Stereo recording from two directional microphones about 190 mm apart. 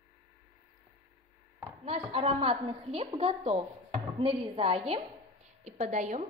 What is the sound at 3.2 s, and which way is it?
A woman's voice, 30° right (ahead or behind).